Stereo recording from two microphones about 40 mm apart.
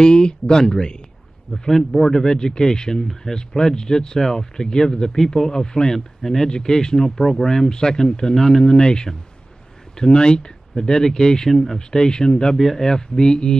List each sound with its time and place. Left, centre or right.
0.0 s speech: left
1.7 s speech: centre
12.0 s speech: centre